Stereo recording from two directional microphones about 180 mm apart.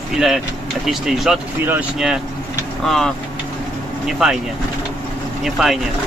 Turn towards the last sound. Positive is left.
turn(degrees=0)  # may be behind; listen again after turning